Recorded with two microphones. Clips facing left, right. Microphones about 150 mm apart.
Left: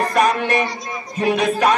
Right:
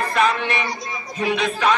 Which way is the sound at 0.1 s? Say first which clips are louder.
Left 1 dB; 40° left (ahead or behind).